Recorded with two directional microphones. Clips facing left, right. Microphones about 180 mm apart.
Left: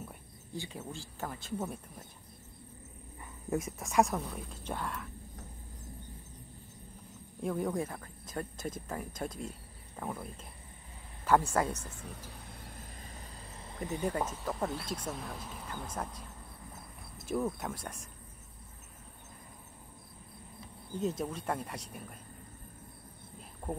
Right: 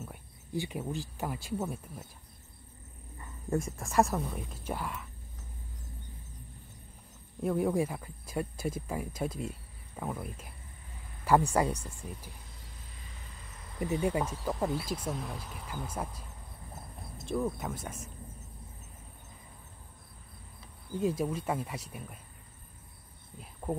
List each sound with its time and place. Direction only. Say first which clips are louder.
0.6 s speech: right 7 dB; 15° right (ahead or behind)
3.2 s speech: right 2 dB; 5° left (ahead or behind)
7.4 s speech: right 4 dB; 5° right (ahead or behind)
12.5 s vehicle: left 5 dB; 55° left (ahead or behind)
13.5 s cricket: left 3 dB; 30° left (ahead or behind)
13.7 s speech: right 4 dB; 15° right (ahead or behind)
17.3 s speech: right 1 dB; centre (ahead or behind)
21.0 s speech: right 4 dB; 10° right (ahead or behind)